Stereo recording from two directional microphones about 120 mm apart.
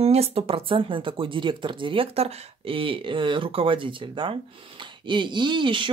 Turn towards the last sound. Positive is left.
turn(degrees=-45)  # may be behind; listen again after turning